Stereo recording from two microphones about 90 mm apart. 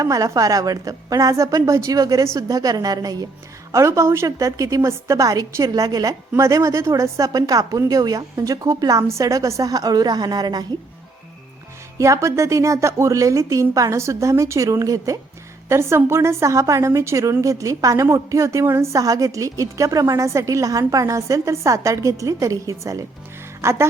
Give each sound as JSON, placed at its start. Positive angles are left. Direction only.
{"t": 0.0, "sound": "a woman's voice", "side_deg": -40}
{"t": 3.7, "sound": "a woman's voice", "side_deg": -35}
{"t": 11.9, "sound": "a woman's voice", "side_deg": -35}
{"t": 15.7, "sound": "a woman's voice", "side_deg": -30}